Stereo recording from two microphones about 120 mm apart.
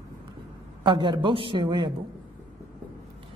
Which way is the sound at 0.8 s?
40° right (ahead or behind).